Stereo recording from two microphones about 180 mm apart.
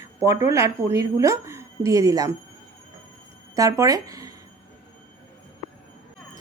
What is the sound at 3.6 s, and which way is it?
Speech, 20° right (ahead or behind).